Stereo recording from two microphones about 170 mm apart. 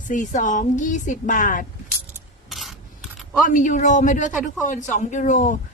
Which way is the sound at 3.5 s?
45° left (ahead or behind).